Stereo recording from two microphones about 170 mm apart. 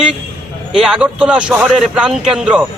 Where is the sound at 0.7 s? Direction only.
5° right (ahead or behind).